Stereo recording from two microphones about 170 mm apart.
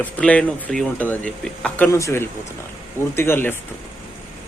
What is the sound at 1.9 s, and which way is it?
Speech, 20° left (ahead or behind).